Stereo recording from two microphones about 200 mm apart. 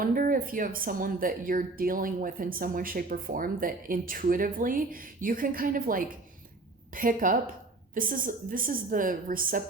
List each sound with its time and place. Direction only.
0.0 s speech: 45° right (ahead or behind)